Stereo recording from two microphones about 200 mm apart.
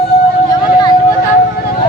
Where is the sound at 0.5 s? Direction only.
20° left (ahead or behind).